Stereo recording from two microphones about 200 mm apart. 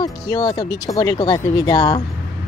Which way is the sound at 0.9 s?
20° left (ahead or behind).